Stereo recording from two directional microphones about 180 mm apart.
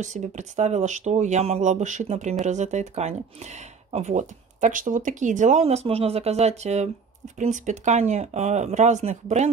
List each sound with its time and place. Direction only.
0.0 s speech: 40° right (ahead or behind)